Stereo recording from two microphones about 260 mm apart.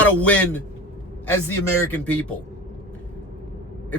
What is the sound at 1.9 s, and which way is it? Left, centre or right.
Speech, centre.